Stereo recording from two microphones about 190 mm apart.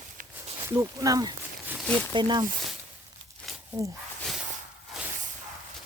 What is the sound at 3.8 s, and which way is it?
Speech, 20° right (ahead or behind).